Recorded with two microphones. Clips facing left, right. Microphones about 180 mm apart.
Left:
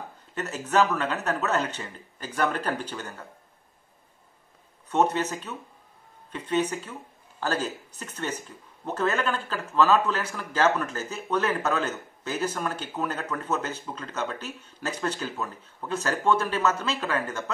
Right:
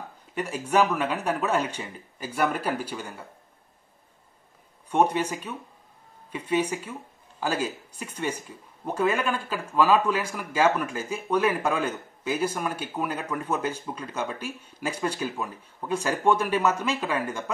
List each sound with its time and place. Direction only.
0.3 s speech: 10° right (ahead or behind)
4.8 s speech: 10° right (ahead or behind)